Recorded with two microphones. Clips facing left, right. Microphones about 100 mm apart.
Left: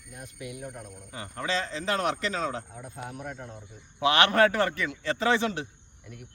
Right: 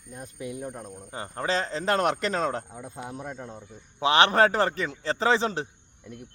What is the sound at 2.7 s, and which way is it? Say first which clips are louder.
A man's voice: right 2 dB; 25° right (ahead or behind).